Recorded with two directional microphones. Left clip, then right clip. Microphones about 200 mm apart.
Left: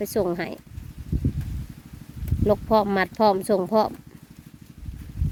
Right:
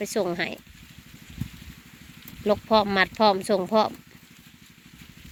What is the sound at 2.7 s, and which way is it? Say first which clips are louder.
Speech: right 3 dB; 15° left (ahead or behind).